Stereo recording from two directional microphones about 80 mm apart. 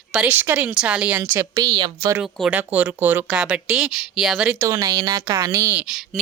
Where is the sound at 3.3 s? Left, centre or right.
Centre.